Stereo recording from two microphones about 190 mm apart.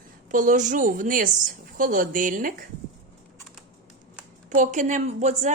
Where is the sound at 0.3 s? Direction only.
45° right (ahead or behind).